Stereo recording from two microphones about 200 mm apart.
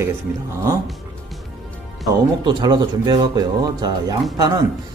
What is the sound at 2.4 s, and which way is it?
Speech, 20° right (ahead or behind).